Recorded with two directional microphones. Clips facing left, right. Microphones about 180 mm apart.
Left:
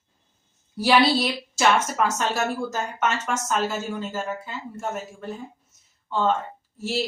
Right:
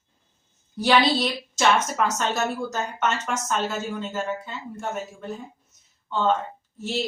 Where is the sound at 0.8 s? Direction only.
5° left (ahead or behind).